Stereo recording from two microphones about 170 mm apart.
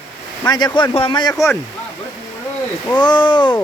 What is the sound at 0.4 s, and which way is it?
Speech, 25° left (ahead or behind).